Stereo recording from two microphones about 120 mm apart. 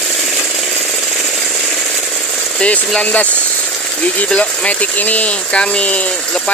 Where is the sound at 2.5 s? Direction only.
10° left (ahead or behind).